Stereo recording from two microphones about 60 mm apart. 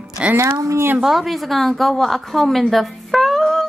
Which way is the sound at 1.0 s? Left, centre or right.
Centre.